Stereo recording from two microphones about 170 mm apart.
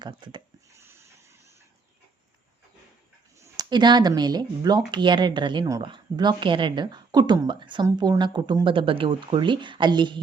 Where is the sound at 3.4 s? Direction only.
25° right (ahead or behind).